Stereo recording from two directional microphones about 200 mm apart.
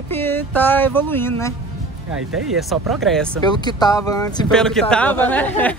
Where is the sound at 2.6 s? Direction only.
Centre (ahead or behind).